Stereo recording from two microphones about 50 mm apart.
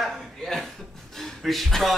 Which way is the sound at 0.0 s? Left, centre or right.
Centre.